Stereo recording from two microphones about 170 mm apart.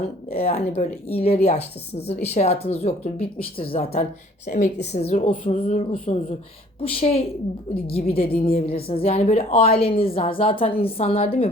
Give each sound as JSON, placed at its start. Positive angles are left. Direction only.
{"t": 0.3, "sound": "a woman's voice", "side_deg": 40}